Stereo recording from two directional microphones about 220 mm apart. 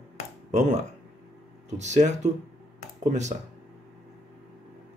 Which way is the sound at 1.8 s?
30° right (ahead or behind).